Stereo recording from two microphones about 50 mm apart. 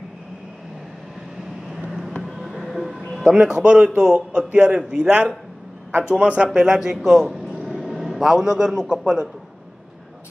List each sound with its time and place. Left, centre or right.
1.9 s vehicle: centre
2.2 s music: centre
3.3 s a man's voice: centre
6.1 s a man's voice: right